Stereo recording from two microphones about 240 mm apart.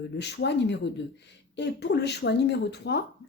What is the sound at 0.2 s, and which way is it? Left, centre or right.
A woman's voice, left.